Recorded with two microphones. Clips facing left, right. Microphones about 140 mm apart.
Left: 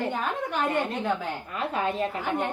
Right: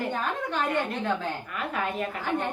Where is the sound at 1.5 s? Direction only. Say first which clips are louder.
Left 5 dB; 30° left (ahead or behind).